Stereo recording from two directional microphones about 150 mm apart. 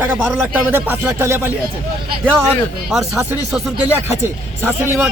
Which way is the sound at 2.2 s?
5° left (ahead or behind).